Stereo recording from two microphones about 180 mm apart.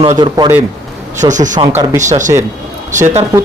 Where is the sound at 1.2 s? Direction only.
45° right (ahead or behind).